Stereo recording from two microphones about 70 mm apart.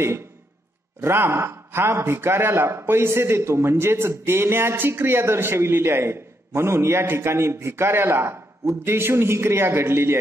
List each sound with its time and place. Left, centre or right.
1.0 s speech: right